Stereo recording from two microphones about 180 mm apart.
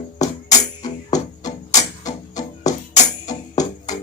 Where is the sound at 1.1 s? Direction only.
20° left (ahead or behind).